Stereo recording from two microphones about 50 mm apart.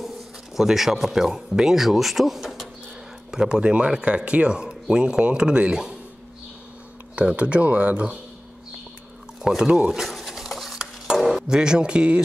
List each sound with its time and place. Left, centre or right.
0.6 s speech: centre
7.2 s speech: right
9.6 s speech: centre
9.9 s stir: centre
11.2 s speech: centre